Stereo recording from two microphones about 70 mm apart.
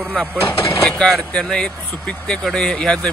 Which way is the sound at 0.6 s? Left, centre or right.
Left.